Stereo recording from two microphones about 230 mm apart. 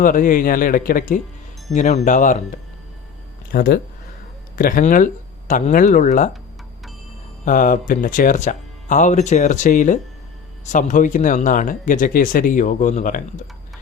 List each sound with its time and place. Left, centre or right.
0.0 s speech: left
7.4 s speech: left